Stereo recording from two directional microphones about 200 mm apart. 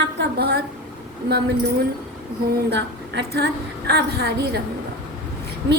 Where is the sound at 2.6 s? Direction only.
55° right (ahead or behind).